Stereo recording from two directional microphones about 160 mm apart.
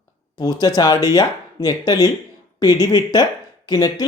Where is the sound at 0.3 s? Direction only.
25° left (ahead or behind).